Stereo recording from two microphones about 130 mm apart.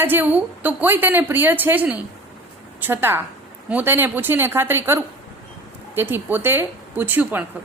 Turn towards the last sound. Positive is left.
turn(degrees=-15)  # may be behind; listen again after turning